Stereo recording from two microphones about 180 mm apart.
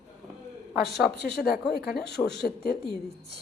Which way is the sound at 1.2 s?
65° left (ahead or behind).